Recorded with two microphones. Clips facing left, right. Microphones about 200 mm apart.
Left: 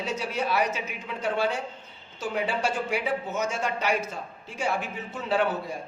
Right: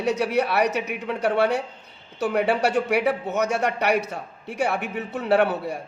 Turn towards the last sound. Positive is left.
turn(degrees=-65)  # may be behind; listen again after turning